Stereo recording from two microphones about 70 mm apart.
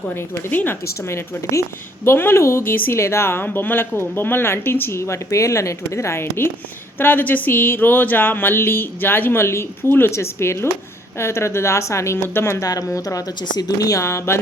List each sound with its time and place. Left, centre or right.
0.1 s speech: left
1.0 s speech: left
2.7 s speech: left
3.0 s speech: left
7.0 s speech: left
12.6 s speech: left